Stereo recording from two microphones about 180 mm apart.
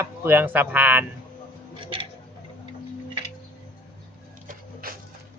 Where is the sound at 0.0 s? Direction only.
10° right (ahead or behind).